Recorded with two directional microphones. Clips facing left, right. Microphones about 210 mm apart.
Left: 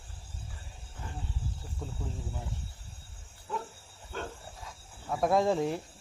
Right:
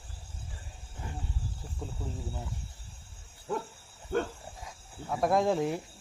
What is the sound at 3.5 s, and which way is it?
Dog, 45° right (ahead or behind).